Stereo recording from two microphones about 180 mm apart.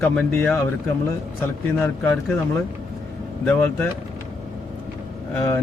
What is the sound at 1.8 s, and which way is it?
Speech, 5° left (ahead or behind).